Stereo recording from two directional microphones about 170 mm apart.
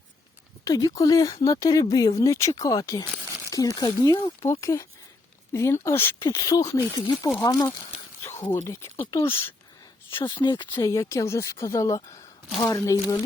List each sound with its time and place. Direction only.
0.6 s speech: 20° left (ahead or behind)
10.2 s speech: 25° left (ahead or behind)